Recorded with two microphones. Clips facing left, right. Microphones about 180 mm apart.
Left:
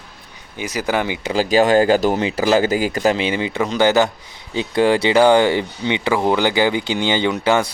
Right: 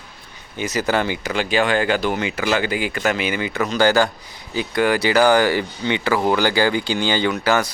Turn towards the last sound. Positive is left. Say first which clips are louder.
# left 2 dB
turn(degrees=25)  # may be behind; listen again after turning